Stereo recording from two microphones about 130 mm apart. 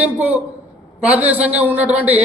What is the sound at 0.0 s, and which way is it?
A man's voice, 15° right (ahead or behind).